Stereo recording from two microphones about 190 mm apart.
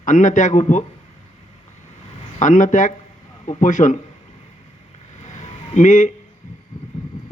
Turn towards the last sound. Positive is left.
turn(degrees=35)  # may be behind; listen again after turning